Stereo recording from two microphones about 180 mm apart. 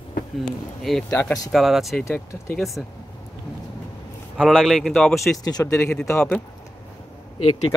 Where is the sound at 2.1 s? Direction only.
15° left (ahead or behind).